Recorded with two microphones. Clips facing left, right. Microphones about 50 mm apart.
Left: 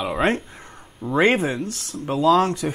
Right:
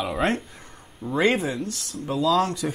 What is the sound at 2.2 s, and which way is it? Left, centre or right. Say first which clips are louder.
Speech: left 4 dB; left.